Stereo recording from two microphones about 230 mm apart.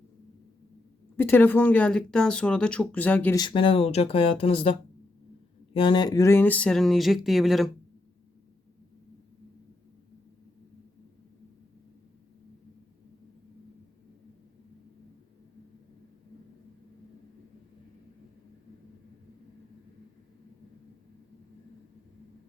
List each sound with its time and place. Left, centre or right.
1.1 s speech: centre
3.4 s speech: left; by 7.7 s centre